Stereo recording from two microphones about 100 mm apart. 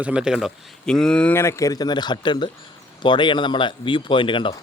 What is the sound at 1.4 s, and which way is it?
Speech, 30° left (ahead or behind).